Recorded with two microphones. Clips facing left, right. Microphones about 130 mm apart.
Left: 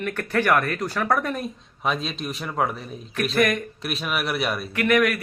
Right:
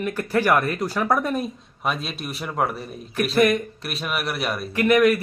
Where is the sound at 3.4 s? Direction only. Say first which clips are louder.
Right 3 dB; 30° right (ahead or behind).